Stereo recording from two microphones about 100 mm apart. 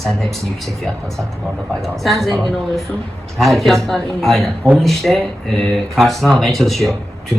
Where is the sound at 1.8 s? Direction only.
Centre (ahead or behind).